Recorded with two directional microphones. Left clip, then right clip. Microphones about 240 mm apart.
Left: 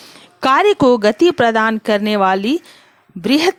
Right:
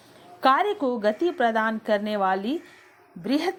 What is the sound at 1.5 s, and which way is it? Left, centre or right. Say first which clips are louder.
A woman's voice: left 8 dB; left.